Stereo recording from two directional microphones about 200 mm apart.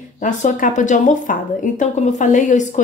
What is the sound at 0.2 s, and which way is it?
A woman's voice, 40° left (ahead or behind).